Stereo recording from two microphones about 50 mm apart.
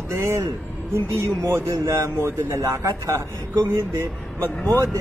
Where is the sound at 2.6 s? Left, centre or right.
Right.